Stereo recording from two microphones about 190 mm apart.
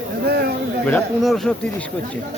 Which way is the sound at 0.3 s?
55° right (ahead or behind).